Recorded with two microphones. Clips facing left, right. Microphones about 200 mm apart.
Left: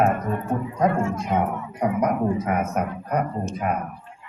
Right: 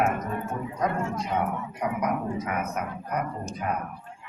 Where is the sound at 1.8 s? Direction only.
45° left (ahead or behind).